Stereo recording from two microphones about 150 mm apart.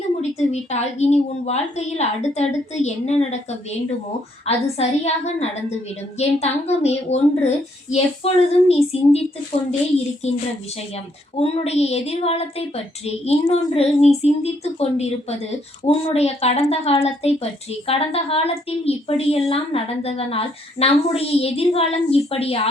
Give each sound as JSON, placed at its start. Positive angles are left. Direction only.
{"t": 0.2, "sound": "a woman's voice", "side_deg": 45}
{"t": 10.2, "sound": "a woman's voice", "side_deg": 50}